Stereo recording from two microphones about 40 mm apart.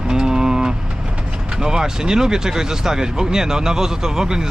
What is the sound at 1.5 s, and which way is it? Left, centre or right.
Speech, centre.